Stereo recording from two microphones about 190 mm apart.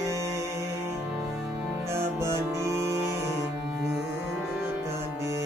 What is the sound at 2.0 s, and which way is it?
Music, 15° right (ahead or behind).